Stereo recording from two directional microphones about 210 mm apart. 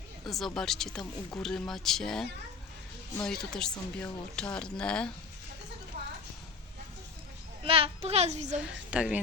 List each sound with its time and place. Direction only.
0.3 s speech: centre (ahead or behind)
3.2 s speech: 5° left (ahead or behind)
7.6 s a child's voice: 25° right (ahead or behind)
8.5 s speech: 5° right (ahead or behind)